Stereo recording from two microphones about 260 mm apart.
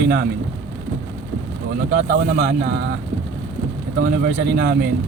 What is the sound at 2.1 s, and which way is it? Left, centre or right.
Speech, right.